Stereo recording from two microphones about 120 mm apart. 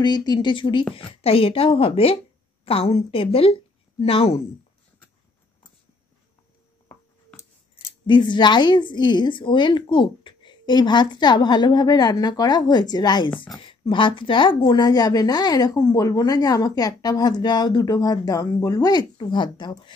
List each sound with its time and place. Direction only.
0.0 s speech: 35° left (ahead or behind); by 4.4 s 55° left (ahead or behind)
8.1 s speech: 40° left (ahead or behind)